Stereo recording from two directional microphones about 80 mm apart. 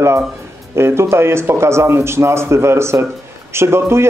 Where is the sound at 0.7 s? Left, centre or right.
Right.